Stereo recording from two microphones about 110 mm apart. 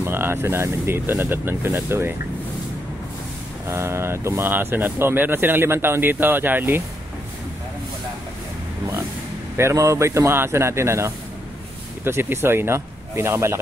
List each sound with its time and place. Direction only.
0.0 s speech: 20° right (ahead or behind)
3.6 s speech: 25° right (ahead or behind)
9.6 s speech: 25° right (ahead or behind)